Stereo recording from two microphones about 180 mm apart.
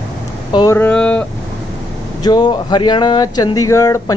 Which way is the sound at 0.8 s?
5° left (ahead or behind).